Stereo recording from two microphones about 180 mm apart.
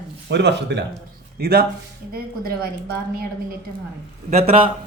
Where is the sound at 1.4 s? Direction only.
60° right (ahead or behind).